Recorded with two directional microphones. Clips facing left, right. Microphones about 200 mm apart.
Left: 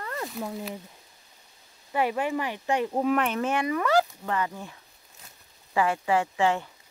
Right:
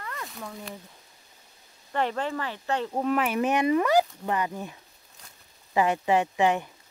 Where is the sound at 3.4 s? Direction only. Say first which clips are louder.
Right 3 dB; 20° right (ahead or behind).